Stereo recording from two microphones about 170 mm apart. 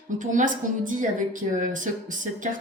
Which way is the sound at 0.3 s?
50° right (ahead or behind).